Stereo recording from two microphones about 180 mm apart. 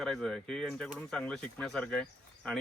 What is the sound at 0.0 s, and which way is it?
Speech, centre (ahead or behind).